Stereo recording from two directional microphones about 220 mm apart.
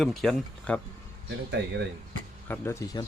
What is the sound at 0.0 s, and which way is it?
Speech, centre (ahead or behind).